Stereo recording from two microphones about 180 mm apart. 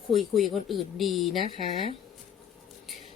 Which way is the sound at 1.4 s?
35° left (ahead or behind).